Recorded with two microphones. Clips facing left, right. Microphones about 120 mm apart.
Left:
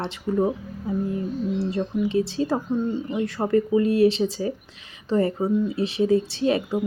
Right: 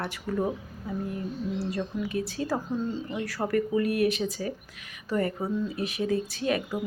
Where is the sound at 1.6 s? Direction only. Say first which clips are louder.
Left 7 dB; 25° left (ahead or behind).